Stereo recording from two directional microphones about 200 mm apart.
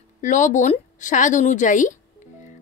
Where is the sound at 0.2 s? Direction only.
40° left (ahead or behind).